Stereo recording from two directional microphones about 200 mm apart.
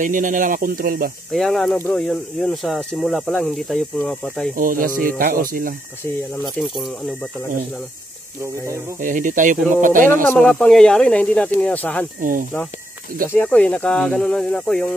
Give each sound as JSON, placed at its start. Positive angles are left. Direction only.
{"t": 0.0, "sound": "speech", "side_deg": -40}
{"t": 1.3, "sound": "speech", "side_deg": 0}
{"t": 4.6, "sound": "speech", "side_deg": -45}
{"t": 6.4, "sound": "speech", "side_deg": 0}
{"t": 9.0, "sound": "speech", "side_deg": -40}
{"t": 10.3, "sound": "speech", "side_deg": 0}
{"t": 12.2, "sound": "speech", "side_deg": -40}
{"t": 13.3, "sound": "speech", "side_deg": 10}